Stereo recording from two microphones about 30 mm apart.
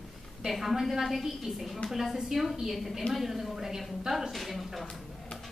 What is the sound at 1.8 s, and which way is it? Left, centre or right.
A woman's voice, centre.